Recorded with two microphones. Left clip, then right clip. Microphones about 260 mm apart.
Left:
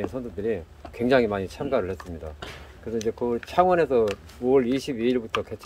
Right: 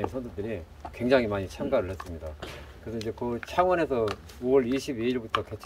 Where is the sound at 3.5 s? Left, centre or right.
Left.